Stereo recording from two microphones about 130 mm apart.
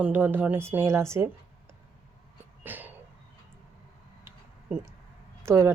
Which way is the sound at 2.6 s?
15° right (ahead or behind).